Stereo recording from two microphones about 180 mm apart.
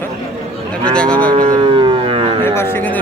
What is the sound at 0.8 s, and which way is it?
Speech, 5° left (ahead or behind).